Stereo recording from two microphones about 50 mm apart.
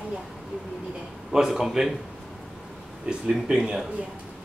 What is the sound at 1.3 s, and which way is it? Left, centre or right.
Speech, centre.